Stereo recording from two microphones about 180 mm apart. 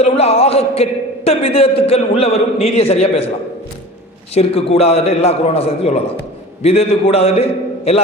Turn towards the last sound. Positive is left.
turn(degrees=35)  # may be behind; listen again after turning